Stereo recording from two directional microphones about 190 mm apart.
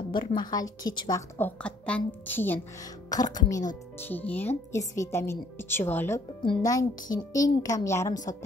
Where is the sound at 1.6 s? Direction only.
5° left (ahead or behind).